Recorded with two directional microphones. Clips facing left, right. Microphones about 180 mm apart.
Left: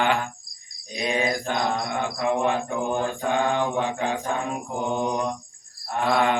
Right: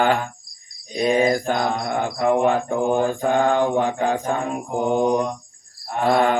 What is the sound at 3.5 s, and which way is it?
Mantra, 45° right (ahead or behind).